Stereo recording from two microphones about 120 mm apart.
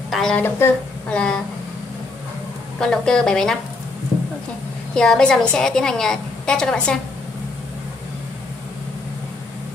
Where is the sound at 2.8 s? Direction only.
5° left (ahead or behind).